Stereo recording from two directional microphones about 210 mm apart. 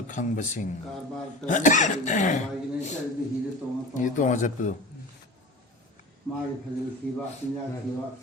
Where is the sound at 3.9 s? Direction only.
35° left (ahead or behind).